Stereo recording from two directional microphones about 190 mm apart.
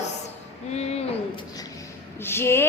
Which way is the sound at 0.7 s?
35° left (ahead or behind).